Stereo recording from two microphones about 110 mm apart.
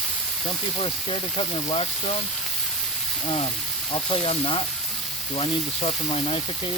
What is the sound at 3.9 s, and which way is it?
Speech, 55° left (ahead or behind).